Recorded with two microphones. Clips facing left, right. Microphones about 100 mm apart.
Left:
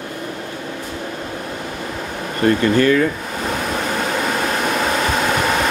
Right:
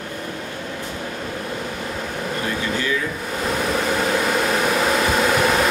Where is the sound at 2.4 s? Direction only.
55° left (ahead or behind).